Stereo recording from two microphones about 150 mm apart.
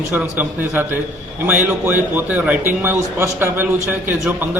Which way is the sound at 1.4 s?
10° right (ahead or behind).